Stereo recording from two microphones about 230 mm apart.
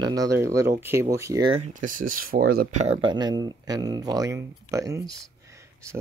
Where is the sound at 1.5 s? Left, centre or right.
Right.